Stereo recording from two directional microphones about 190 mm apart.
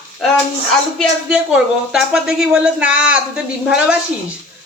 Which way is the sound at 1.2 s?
5° right (ahead or behind).